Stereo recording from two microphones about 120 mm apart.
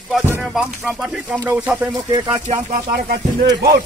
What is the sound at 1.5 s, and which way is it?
Speech, 15° right (ahead or behind).